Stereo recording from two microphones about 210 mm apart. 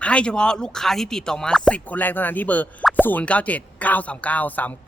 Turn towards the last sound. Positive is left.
turn(degrees=10)  # may be behind; listen again after turning